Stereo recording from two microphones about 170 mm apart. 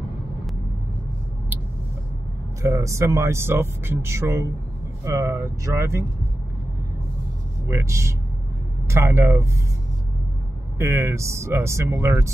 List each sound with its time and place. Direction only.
2.6 s speech: 20° right (ahead or behind)
7.6 s speech: 15° right (ahead or behind)
10.8 s speech: 15° right (ahead or behind)